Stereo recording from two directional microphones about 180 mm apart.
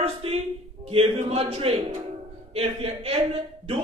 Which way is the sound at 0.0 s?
30° right (ahead or behind).